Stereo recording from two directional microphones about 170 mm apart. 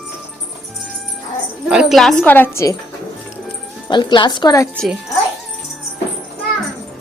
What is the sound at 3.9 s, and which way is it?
Speech, 25° left (ahead or behind).